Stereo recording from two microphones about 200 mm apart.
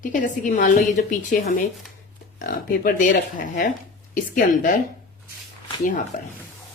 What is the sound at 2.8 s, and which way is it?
Speech, 45° left (ahead or behind).